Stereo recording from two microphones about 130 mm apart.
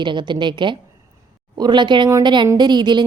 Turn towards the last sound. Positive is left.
turn(degrees=-35)  # may be behind; listen again after turning